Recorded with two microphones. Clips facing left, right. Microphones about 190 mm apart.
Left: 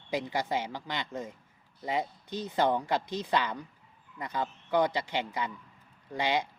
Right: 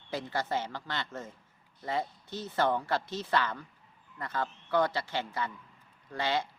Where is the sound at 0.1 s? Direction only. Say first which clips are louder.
Left 2 dB; 15° left (ahead or behind).